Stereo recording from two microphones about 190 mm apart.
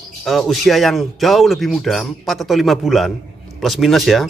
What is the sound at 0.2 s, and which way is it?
Speech, centre (ahead or behind).